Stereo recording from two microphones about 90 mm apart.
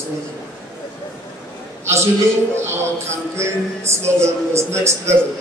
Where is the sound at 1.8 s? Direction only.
30° right (ahead or behind).